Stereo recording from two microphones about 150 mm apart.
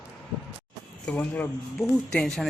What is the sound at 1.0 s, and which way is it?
Speech, 10° left (ahead or behind).